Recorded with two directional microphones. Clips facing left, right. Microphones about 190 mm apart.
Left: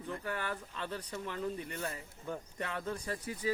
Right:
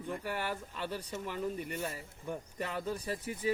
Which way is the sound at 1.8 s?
20° right (ahead or behind).